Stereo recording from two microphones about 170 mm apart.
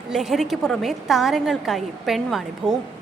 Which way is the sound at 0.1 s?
Centre (ahead or behind).